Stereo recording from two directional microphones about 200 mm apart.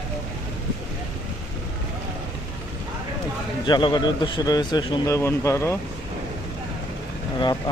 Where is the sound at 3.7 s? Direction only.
25° left (ahead or behind).